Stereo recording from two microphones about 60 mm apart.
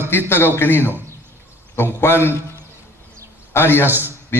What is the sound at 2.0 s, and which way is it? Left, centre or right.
Speech, left.